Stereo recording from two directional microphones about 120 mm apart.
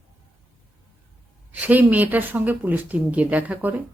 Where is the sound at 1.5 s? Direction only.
15° right (ahead or behind).